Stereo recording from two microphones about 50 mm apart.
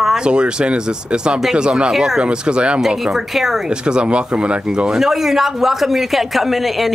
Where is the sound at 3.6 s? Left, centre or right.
Centre.